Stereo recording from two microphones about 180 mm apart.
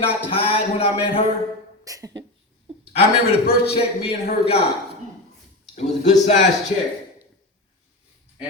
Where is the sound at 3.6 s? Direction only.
35° left (ahead or behind).